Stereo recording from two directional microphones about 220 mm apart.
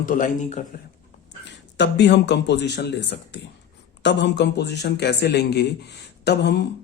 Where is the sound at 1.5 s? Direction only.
55° left (ahead or behind).